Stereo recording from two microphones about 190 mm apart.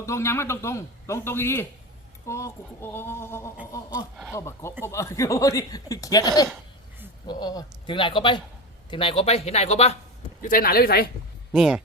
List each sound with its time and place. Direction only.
0.0 s a man's voice: 15° left (ahead or behind); by 10.0 s 35° left (ahead or behind)
10.4 s speech: 50° left (ahead or behind)
11.5 s speech: centre (ahead or behind)